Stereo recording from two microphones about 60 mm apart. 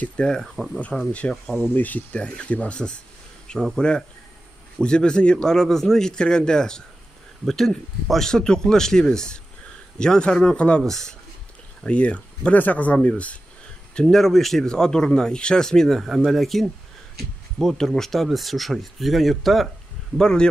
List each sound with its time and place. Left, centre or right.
0.0 s speech: centre
1.7 s speech: left
10.9 s speech: centre
11.8 s speech: left
13.9 s speech: centre
20.2 s speech: centre